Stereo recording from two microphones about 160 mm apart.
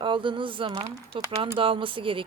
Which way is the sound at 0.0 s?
30° right (ahead or behind).